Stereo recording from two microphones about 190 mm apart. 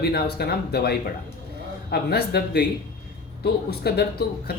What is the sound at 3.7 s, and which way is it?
Speech, 55° left (ahead or behind).